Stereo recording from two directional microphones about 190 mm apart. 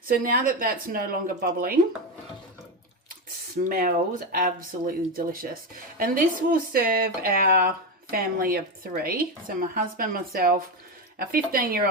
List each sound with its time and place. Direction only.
0.2 s speech: 50° right (ahead or behind)
3.7 s speech: 50° right (ahead or behind)